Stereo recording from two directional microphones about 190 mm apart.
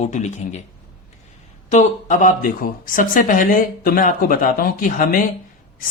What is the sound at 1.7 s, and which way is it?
Speech, 40° left (ahead or behind).